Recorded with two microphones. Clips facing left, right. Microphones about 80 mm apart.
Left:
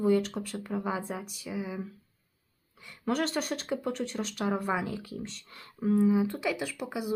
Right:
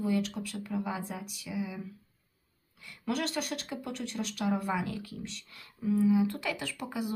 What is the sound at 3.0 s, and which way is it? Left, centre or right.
Speech, left.